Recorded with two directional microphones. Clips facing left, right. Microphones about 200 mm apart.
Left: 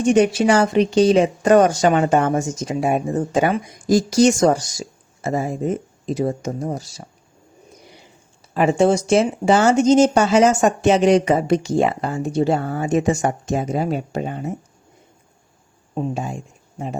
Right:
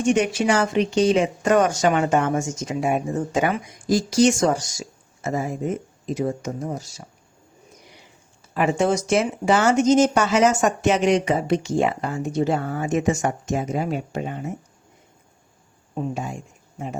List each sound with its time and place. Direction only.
0.0 s speech: 35° left (ahead or behind)
8.5 s speech: 30° left (ahead or behind)
16.0 s speech: 30° left (ahead or behind)